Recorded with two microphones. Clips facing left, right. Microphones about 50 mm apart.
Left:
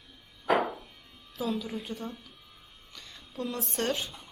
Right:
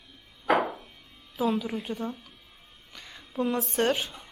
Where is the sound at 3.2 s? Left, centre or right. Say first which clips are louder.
Right 7 dB; centre.